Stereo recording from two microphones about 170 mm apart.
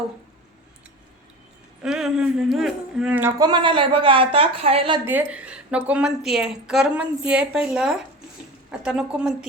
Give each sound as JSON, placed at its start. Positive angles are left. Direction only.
{"t": 1.8, "sound": "a man's voice", "side_deg": -5}
{"t": 5.0, "sound": "a woman's voice", "side_deg": -10}